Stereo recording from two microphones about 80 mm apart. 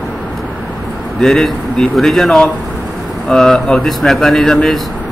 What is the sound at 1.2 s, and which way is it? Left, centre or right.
Speech, centre.